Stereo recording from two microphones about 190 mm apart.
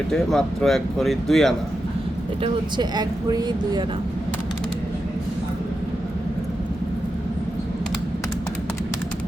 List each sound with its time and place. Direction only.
0.1 s speech: centre (ahead or behind)
2.4 s speech: 25° right (ahead or behind)